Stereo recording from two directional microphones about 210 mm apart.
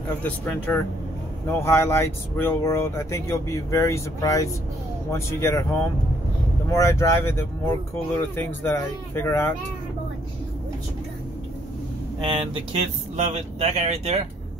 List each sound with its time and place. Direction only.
0.2 s speech: 10° left (ahead or behind)
12.2 s speech: 25° right (ahead or behind)